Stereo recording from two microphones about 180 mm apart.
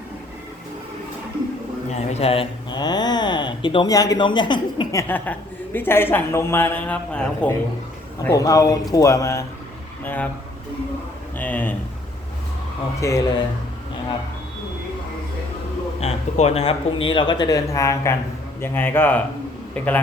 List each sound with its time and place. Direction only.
1.9 s speech: 40° left (ahead or behind); by 7.5 s 5° left (ahead or behind)
8.2 s a man's voice: 20° left (ahead or behind)
11.3 s a man's voice: 10° left (ahead or behind)
13.0 s a man's voice: 15° left (ahead or behind)
16.0 s a man's voice: 35° left (ahead or behind); by 20.0 s 10° left (ahead or behind)